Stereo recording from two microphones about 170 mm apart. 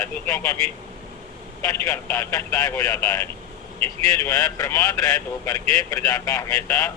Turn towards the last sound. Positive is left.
turn(degrees=20)  # may be behind; listen again after turning